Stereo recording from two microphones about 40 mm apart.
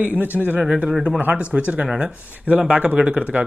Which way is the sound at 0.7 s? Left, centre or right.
Right.